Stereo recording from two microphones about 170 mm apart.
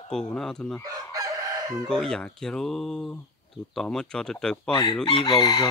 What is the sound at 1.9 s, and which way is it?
Speech, 5° left (ahead or behind).